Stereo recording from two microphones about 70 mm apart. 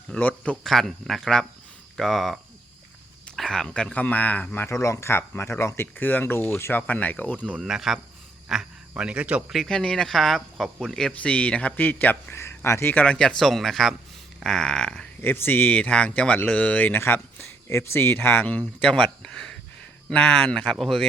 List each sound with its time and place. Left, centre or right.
0.1 s speech: centre
0.6 s speech: centre
3.9 s speech: left
4.7 s speech: left
6.8 s speech: left
7.6 s speech: centre
8.4 s a sound: centre
9.0 s speech: centre
9.6 s speech: centre; by 12.4 s left
12.4 s speech: left
12.9 s speech: centre
15.2 s speech: left
15.8 s speech: centre; by 18.5 s left
18.5 s speech: centre